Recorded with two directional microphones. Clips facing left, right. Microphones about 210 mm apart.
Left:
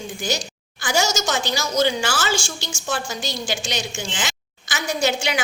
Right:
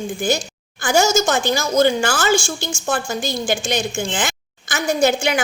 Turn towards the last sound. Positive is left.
turn(degrees=-50)  # may be behind; listen again after turning